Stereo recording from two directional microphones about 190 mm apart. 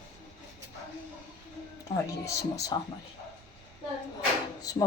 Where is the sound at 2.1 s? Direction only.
20° left (ahead or behind).